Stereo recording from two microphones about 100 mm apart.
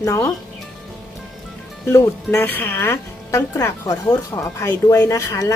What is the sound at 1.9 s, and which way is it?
A woman's voice, 25° left (ahead or behind).